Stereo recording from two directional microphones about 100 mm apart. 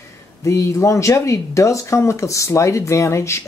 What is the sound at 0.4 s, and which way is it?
Speech, 30° left (ahead or behind).